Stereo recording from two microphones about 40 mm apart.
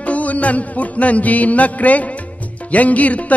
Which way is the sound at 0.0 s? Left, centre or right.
Left.